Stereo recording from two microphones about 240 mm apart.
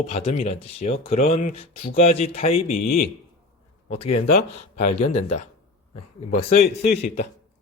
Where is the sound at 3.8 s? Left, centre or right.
Left.